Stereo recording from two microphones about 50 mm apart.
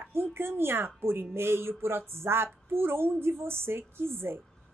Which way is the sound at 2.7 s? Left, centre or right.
Right.